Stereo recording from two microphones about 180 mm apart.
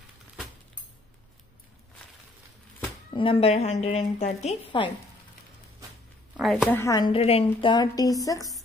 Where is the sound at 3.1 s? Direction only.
30° left (ahead or behind).